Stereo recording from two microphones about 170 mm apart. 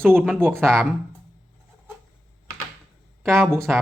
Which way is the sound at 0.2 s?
5° right (ahead or behind).